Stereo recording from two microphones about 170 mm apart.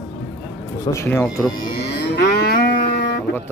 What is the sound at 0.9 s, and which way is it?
Speech, 15° left (ahead or behind).